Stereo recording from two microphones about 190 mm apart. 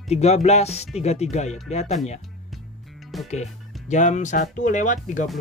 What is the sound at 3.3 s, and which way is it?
Speech, 35° left (ahead or behind).